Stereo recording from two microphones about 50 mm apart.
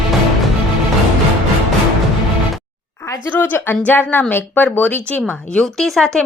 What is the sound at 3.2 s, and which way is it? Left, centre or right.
Speech, left.